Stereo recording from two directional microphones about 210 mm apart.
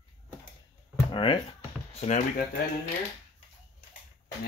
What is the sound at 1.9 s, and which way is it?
Speech, 30° left (ahead or behind).